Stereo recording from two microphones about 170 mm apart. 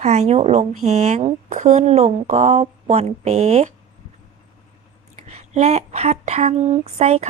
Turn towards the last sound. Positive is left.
turn(degrees=-40)  # may be behind; listen again after turning